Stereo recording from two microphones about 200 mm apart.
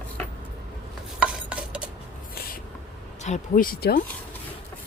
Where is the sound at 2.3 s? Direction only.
50° left (ahead or behind).